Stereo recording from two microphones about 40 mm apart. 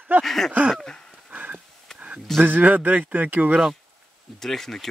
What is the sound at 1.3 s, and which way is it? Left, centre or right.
Dog, right.